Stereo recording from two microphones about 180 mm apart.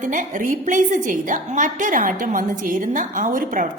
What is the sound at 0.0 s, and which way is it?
A woman's voice, 45° right (ahead or behind).